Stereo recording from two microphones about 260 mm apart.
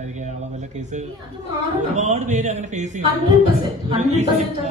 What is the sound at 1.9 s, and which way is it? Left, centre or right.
A man's voice, right.